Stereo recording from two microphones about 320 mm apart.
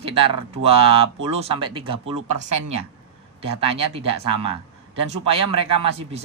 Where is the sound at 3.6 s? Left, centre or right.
Centre.